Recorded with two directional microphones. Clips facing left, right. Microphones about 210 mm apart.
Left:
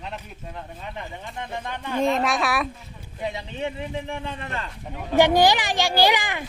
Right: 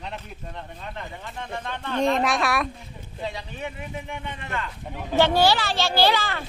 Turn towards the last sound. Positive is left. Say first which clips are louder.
# left 1 dB
turn(degrees=15)  # may be behind; listen again after turning